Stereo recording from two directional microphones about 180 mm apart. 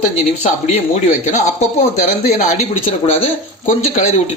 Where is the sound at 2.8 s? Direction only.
30° left (ahead or behind).